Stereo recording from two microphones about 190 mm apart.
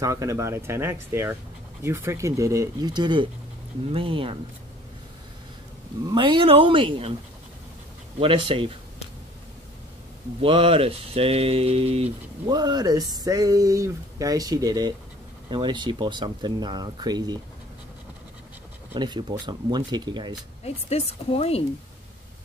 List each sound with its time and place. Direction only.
0.0 s speech: 15° right (ahead or behind)
6.0 s speech: 25° right (ahead or behind)
8.2 s speech: 30° right (ahead or behind)
10.4 s speech: 30° right (ahead or behind)
18.9 s speech: 20° right (ahead or behind)
20.6 s speech: 35° left (ahead or behind)